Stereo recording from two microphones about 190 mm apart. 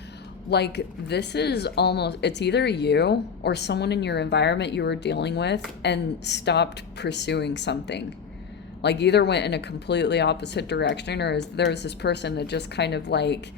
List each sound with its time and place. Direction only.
0.5 s speech: 60° left (ahead or behind)